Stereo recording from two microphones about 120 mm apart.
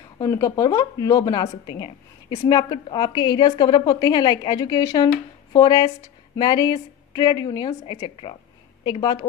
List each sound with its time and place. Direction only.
0.2 s a woman's voice: 30° left (ahead or behind)
7.8 s a woman's voice: 45° left (ahead or behind)